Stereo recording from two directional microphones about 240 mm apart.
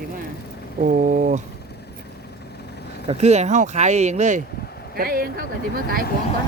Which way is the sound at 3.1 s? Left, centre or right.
Right.